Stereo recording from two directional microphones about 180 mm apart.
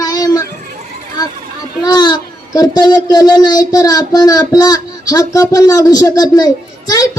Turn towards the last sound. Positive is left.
turn(degrees=20)  # may be behind; listen again after turning